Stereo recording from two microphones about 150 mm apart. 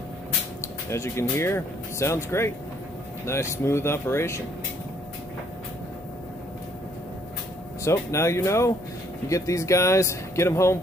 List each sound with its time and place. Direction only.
0.6 s speech: 20° left (ahead or behind)
7.8 s speech: 20° left (ahead or behind)